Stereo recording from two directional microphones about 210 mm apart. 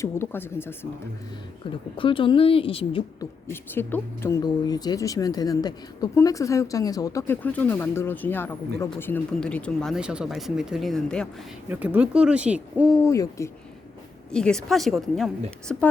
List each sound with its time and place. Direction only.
0.0 s speech: 10° left (ahead or behind)
2.0 s a woman's voice: 25° left (ahead or behind)
3.5 s speech: 10° left (ahead or behind); by 13.1 s 5° right (ahead or behind)
13.1 s speech: 15° left (ahead or behind)
14.3 s speech: 5° left (ahead or behind)